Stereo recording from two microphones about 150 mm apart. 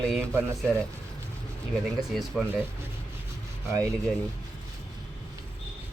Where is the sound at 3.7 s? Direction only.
20° right (ahead or behind).